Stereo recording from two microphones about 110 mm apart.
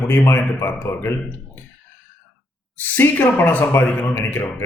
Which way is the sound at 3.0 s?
15° left (ahead or behind).